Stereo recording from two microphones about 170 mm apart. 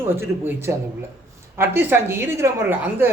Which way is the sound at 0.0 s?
15° right (ahead or behind).